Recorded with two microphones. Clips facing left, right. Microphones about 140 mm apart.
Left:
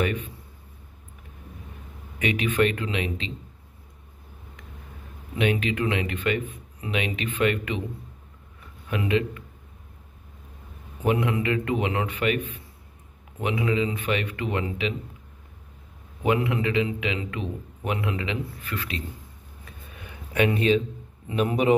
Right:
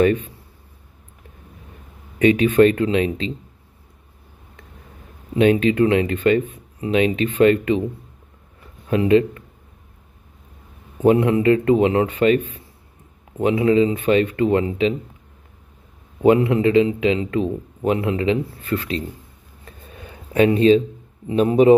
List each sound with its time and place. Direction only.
0.0 s speech: 35° right (ahead or behind)
2.1 s speech: 35° right (ahead or behind)
5.3 s speech: 35° right (ahead or behind)
8.8 s speech: 30° right (ahead or behind)
11.0 s speech: 35° right (ahead or behind)
16.2 s speech: 30° right (ahead or behind)
19.9 s a sound: 30° right (ahead or behind)
21.3 s speech: 30° right (ahead or behind)